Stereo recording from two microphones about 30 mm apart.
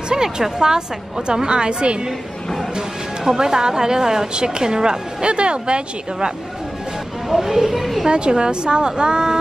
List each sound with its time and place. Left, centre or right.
0.1 s a woman's voice: right
3.3 s a woman's voice: right
7.2 s speech: centre
8.1 s a woman's voice: right